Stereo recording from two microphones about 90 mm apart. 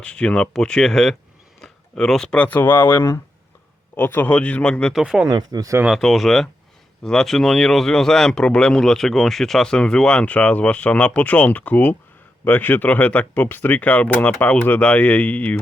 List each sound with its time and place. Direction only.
0.0 s speech: 10° left (ahead or behind)
4.9 s speech: 5° right (ahead or behind)
5.3 s speech: 50° right (ahead or behind)
5.9 s speech: centre (ahead or behind); by 15.5 s 15° left (ahead or behind)